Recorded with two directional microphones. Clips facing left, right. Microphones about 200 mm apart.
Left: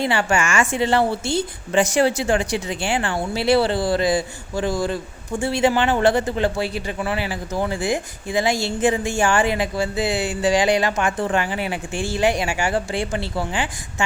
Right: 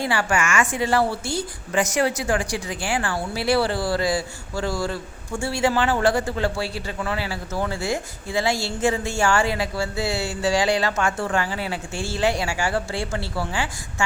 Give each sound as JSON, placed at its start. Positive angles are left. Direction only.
{"t": 0.0, "sound": "a woman's voice", "side_deg": 25}